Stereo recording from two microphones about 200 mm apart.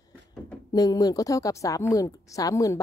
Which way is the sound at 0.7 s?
20° left (ahead or behind).